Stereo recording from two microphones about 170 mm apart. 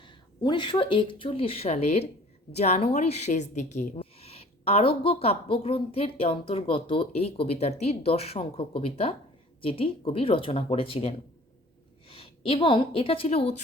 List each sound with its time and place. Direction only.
0.0 s a woman's voice: 25° left (ahead or behind)
12.0 s a sound: 35° left (ahead or behind)
12.6 s a woman's voice: 30° left (ahead or behind)